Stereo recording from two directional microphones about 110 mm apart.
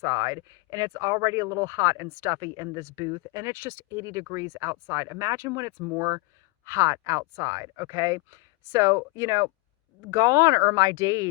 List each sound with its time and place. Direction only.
0.0 s speech: 30° right (ahead or behind)